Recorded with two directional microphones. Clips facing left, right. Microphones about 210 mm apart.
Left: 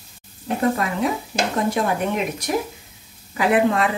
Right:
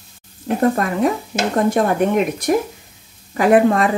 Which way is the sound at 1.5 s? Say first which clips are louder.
Right 7 dB; 50° right (ahead or behind).